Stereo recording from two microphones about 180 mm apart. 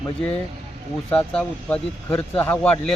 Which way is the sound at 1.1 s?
5° left (ahead or behind).